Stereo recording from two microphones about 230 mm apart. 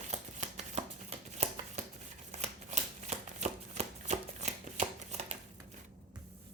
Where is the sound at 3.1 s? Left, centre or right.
Right.